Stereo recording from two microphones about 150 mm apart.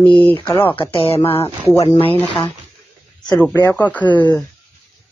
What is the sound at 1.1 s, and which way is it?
Speech, 40° left (ahead or behind).